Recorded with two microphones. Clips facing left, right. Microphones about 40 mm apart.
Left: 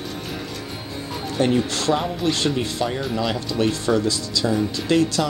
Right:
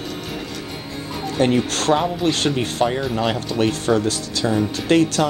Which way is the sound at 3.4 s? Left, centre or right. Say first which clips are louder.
Right 2 dB; right.